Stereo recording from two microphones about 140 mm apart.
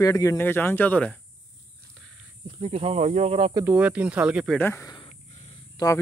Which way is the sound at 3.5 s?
15° right (ahead or behind).